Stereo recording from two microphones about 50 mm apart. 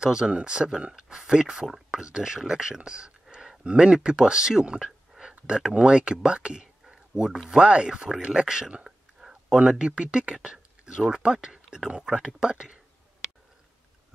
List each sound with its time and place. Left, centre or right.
0.0 s speech: centre
8.3 s a sound: centre
9.6 s speech: centre
11.4 s whispering: centre
11.9 s speech: centre